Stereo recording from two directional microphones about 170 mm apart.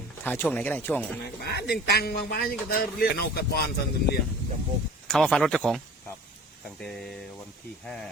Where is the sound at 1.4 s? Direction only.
70° left (ahead or behind).